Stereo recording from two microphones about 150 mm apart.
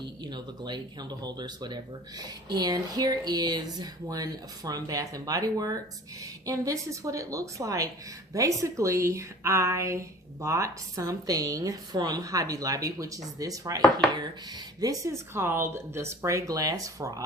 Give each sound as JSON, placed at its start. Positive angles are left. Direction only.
{"t": 0.2, "sound": "speech", "side_deg": -30}